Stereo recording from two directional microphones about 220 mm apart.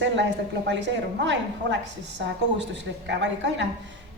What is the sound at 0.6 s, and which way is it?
A woman's voice, 55° right (ahead or behind).